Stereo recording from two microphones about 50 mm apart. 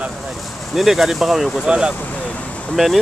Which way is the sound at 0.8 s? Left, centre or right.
Centre.